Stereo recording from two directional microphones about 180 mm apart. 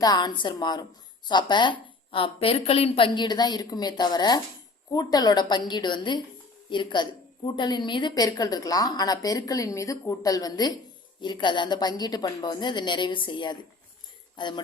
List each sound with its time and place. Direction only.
0.0 s a woman's voice: 25° left (ahead or behind)